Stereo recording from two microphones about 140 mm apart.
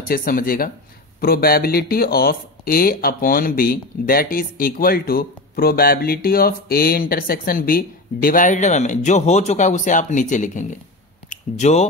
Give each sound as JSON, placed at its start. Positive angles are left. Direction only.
{"t": 0.1, "sound": "speech", "side_deg": 90}